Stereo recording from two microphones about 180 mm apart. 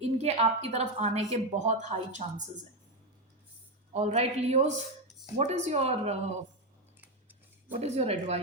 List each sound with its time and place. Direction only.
0.0 s a woman's voice: 35° right (ahead or behind)
3.9 s a woman's voice: 40° right (ahead or behind)
7.7 s a woman's voice: 35° right (ahead or behind)